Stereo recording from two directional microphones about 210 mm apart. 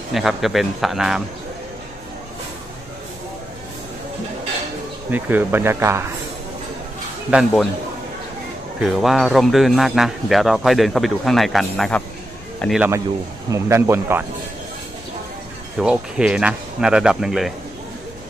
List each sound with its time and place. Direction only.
0.1 s speech: centre (ahead or behind)
5.1 s speech: 10° right (ahead or behind)
7.2 s speech: 5° right (ahead or behind)
8.8 s speech: centre (ahead or behind)
13.5 s speech: 15° right (ahead or behind)
15.8 s speech: 5° right (ahead or behind)